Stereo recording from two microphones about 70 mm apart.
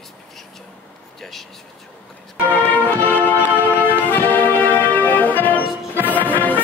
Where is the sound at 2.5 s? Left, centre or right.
Left.